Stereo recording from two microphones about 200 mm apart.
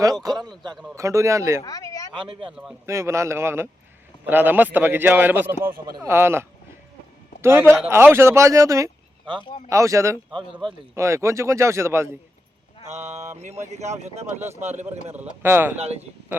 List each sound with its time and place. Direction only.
0.0 s a man's voice: 20° right (ahead or behind)
1.6 s a sound: 20° left (ahead or behind)
2.1 s a man's voice: 25° right (ahead or behind)
2.8 s speech: 15° right (ahead or behind)
7.4 s speech: 10° right (ahead or behind)
9.4 s speech: 25° left (ahead or behind)
9.6 s speech: 15° right (ahead or behind)
10.9 s speech: 15° right (ahead or behind)
12.9 s speech: 35° right (ahead or behind)
15.1 s speech: 10° right (ahead or behind)